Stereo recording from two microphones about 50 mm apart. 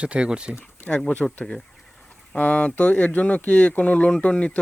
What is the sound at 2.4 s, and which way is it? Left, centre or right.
Speech, left.